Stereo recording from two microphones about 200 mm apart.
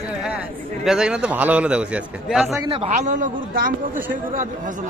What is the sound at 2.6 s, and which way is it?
A man's voice, 30° right (ahead or behind).